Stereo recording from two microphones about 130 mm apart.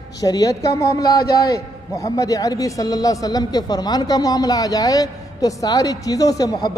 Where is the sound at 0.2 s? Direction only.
30° left (ahead or behind).